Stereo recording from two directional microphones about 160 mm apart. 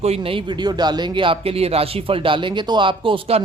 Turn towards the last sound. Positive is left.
turn(degrees=-35)  # may be behind; listen again after turning